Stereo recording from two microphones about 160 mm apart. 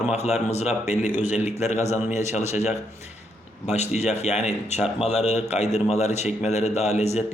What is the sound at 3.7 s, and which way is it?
Speech, 45° left (ahead or behind).